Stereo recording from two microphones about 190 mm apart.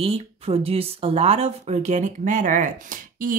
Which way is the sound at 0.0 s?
30° right (ahead or behind).